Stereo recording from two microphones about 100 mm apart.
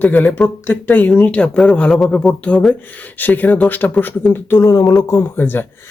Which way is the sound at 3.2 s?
15° left (ahead or behind).